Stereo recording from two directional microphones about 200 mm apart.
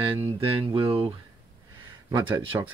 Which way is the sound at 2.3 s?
10° right (ahead or behind).